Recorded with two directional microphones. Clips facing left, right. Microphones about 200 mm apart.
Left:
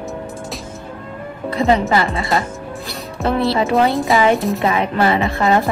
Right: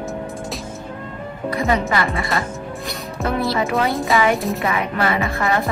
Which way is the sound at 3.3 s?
30° left (ahead or behind).